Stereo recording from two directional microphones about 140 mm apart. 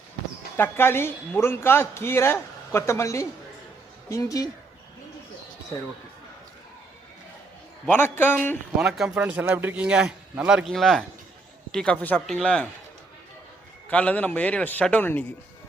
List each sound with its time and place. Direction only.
0.5 s a man's voice: 15° left (ahead or behind)
7.9 s a man's voice: 15° left (ahead or behind)
8.8 s a man's voice: centre (ahead or behind)
13.9 s a man's voice: 10° left (ahead or behind)